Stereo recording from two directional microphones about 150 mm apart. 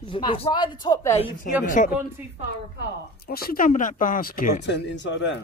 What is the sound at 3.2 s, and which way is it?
Speech, 85° left.